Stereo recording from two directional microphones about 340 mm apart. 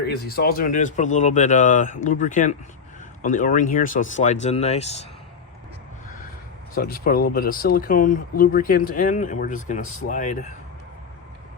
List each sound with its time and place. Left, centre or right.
0.0 s speech: left
6.7 s speech: left